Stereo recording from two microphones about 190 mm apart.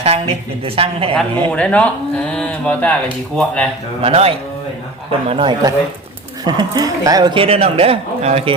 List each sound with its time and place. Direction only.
0.0 s speech: 30° right (ahead or behind)
1.1 s speech: 5° left (ahead or behind)
4.0 s speech: 30° right (ahead or behind)